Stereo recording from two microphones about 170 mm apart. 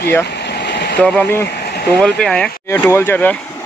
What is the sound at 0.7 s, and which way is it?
Vehicle, 80° left.